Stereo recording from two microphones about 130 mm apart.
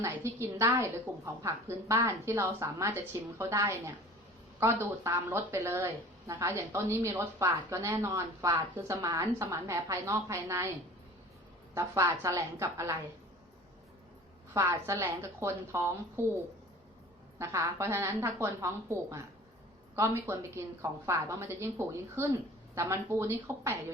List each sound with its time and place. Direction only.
0.0 s a woman's voice: 20° right (ahead or behind)
11.7 s a woman's voice: 20° right (ahead or behind)
14.5 s a woman's voice: 25° right (ahead or behind)
17.3 s a woman's voice: 20° right (ahead or behind)